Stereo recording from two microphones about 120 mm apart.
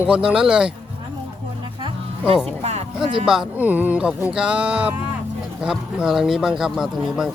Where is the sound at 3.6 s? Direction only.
15° right (ahead or behind).